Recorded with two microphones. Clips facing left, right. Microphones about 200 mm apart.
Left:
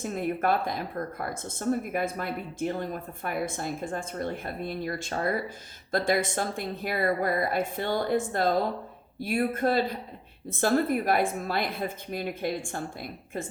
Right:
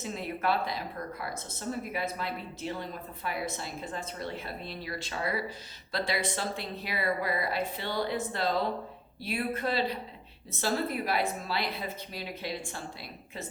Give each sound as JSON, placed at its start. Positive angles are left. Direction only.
{"t": 0.0, "sound": "speech", "side_deg": 50}